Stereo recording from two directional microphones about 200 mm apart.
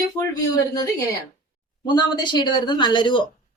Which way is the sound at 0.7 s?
20° left (ahead or behind).